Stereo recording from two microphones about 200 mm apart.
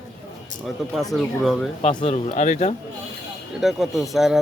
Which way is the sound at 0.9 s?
Centre (ahead or behind).